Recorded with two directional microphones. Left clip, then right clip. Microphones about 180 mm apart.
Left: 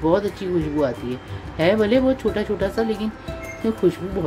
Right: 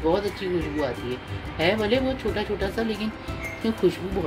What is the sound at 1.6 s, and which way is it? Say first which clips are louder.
Speech: left 5 dB; 35° left (ahead or behind).